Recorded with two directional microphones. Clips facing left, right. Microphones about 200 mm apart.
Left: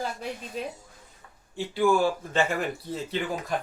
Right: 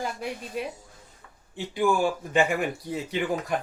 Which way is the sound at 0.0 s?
10° right (ahead or behind).